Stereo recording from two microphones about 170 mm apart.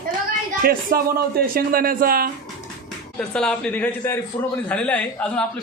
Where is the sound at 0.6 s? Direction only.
60° right (ahead or behind).